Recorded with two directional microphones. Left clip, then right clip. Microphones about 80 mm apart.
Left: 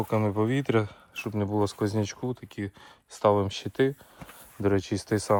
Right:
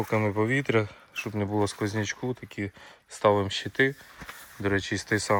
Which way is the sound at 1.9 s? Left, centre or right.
Left.